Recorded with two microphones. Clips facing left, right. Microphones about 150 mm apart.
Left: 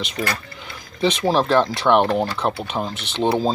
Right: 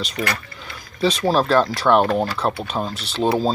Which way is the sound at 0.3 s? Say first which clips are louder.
Even; 15° left (ahead or behind).